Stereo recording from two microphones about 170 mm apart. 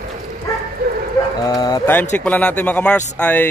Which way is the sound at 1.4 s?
20° left (ahead or behind).